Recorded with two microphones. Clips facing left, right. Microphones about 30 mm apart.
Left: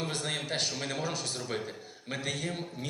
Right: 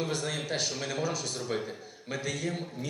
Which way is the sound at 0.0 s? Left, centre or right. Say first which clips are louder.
Right 2 dB; left.